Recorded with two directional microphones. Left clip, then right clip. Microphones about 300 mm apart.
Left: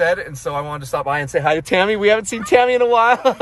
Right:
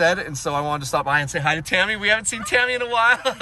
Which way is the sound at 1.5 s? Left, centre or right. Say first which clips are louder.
Left 4 dB; centre.